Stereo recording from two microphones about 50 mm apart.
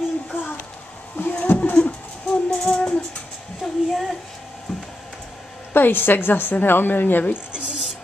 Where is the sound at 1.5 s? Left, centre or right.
Left.